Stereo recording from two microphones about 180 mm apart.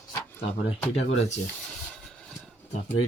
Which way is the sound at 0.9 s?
40° left (ahead or behind).